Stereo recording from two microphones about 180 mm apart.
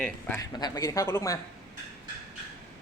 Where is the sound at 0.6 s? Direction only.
20° left (ahead or behind).